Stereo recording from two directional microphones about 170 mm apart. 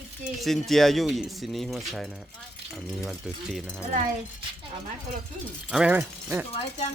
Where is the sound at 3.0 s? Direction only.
Centre (ahead or behind).